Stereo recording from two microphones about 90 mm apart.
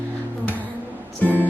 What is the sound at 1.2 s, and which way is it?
Music, 20° left (ahead or behind).